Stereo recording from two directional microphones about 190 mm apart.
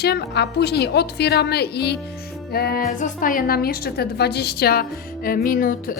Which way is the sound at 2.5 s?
55° left (ahead or behind).